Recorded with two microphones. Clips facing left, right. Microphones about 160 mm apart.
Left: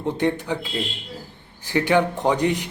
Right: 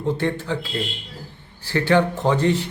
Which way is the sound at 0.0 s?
15° left (ahead or behind).